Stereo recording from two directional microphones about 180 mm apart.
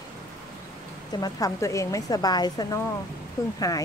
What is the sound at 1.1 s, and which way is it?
A woman's voice, 20° left (ahead or behind).